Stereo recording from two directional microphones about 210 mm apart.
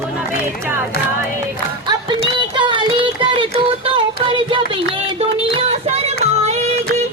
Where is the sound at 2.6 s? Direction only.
20° right (ahead or behind).